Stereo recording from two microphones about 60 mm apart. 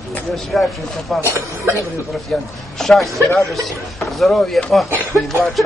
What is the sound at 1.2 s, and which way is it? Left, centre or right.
Speech, right.